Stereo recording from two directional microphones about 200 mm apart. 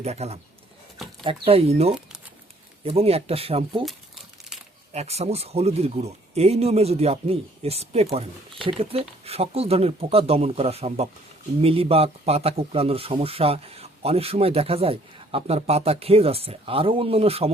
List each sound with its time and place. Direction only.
0.0 s speech: 30° right (ahead or behind)
4.9 s speech: 30° right (ahead or behind)